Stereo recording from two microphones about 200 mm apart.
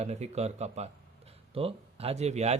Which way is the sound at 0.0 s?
35° right (ahead or behind).